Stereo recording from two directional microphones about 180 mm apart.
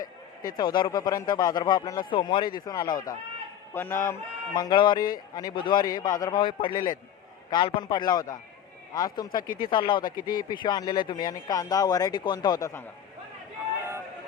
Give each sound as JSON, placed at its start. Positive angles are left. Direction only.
{"t": 0.4, "sound": "speech", "side_deg": 25}
{"t": 9.4, "sound": "speech", "side_deg": 50}
{"t": 9.6, "sound": "speech", "side_deg": 25}
{"t": 10.1, "sound": "speech", "side_deg": 50}
{"t": 10.5, "sound": "speech", "side_deg": 25}